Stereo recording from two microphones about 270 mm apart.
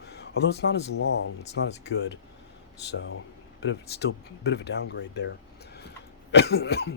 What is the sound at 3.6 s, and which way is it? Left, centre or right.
Speech, left.